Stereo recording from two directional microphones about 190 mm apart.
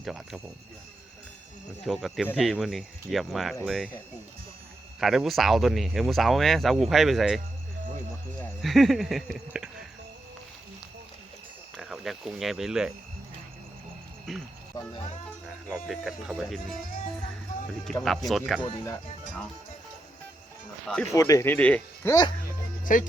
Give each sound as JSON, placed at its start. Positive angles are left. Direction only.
{"t": 0.0, "sound": "speech", "side_deg": 0}
{"t": 1.8, "sound": "speech", "side_deg": 0}
{"t": 4.9, "sound": "speech", "side_deg": 0}
{"t": 8.6, "sound": "speech", "side_deg": 0}
{"t": 11.8, "sound": "speech", "side_deg": 0}
{"t": 14.3, "sound": "speech", "side_deg": 0}
{"t": 14.8, "sound": "speech", "side_deg": 20}
{"t": 15.4, "sound": "speech", "side_deg": 0}
{"t": 18.0, "sound": "speech", "side_deg": 0}
{"t": 20.8, "sound": "speech", "side_deg": 5}
{"t": 21.1, "sound": "speech", "side_deg": 15}
{"t": 22.8, "sound": "speech", "side_deg": 45}